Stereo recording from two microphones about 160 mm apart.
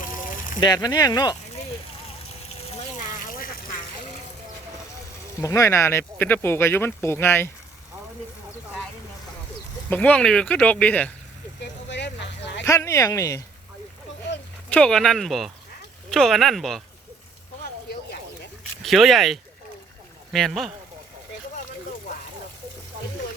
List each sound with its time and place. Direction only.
0.6 s speech: 25° left (ahead or behind)
5.4 s speech: 20° left (ahead or behind)
9.9 s speech: 10° left (ahead or behind)
11.9 s a sound: 90° left
12.6 s speech: 20° left (ahead or behind)
14.7 s speech: 5° left (ahead or behind)
18.8 s speech: centre (ahead or behind)